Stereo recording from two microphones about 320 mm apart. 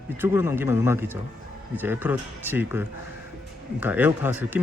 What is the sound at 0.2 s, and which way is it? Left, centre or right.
Speech, centre.